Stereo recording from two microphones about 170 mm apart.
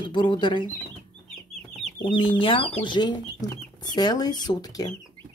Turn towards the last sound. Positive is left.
turn(degrees=25)  # may be behind; listen again after turning